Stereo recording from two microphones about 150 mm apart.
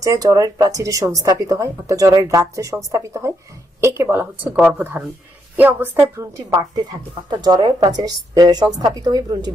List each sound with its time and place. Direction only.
0.0 s speech: 25° right (ahead or behind)
7.2 s speech: 30° right (ahead or behind)